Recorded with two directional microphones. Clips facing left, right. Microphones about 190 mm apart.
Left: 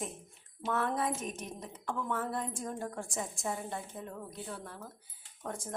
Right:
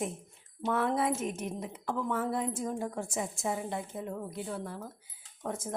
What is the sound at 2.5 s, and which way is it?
Speech, 20° right (ahead or behind).